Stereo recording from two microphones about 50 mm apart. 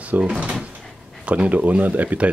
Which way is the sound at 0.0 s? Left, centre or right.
Right.